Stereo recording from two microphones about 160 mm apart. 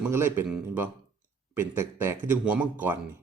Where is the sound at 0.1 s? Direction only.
15° right (ahead or behind).